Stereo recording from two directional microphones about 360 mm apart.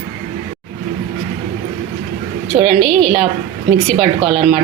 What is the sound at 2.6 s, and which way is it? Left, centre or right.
A woman's voice, centre.